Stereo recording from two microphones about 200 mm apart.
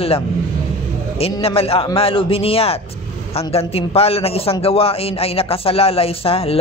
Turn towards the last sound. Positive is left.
turn(degrees=30)  # may be behind; listen again after turning